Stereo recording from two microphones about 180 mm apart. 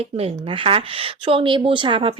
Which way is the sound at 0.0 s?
35° right (ahead or behind).